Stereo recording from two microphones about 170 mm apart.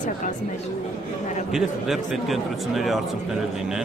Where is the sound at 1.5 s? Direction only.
Centre (ahead or behind).